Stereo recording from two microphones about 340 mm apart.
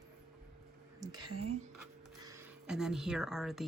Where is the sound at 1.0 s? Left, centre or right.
Centre.